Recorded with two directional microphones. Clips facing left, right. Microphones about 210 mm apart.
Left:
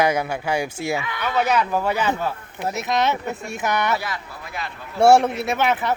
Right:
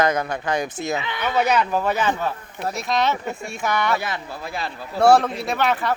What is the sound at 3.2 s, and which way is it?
Speech, centre (ahead or behind).